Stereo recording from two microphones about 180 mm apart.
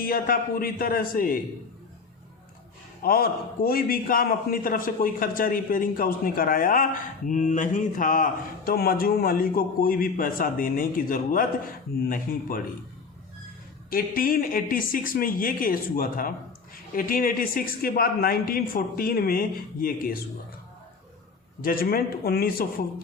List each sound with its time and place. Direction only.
0.0 s speech: 55° left (ahead or behind)
3.0 s speech: 55° left (ahead or behind)
13.9 s speech: 55° left (ahead or behind)
21.6 s speech: 55° left (ahead or behind)